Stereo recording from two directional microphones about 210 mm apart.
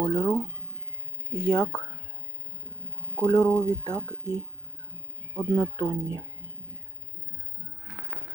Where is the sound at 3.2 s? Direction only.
20° left (ahead or behind).